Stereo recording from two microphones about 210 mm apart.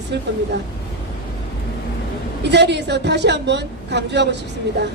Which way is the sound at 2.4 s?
55° right (ahead or behind).